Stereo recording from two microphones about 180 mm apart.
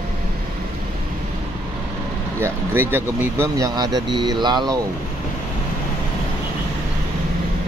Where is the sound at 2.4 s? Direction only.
10° right (ahead or behind).